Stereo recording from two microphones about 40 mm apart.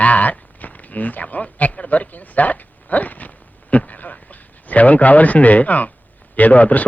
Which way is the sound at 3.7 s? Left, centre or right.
Left.